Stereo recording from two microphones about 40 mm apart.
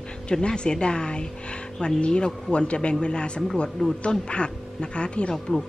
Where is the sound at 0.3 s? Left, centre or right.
Left.